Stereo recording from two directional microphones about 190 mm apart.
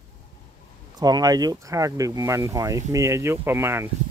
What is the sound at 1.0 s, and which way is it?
Speech, 20° right (ahead or behind).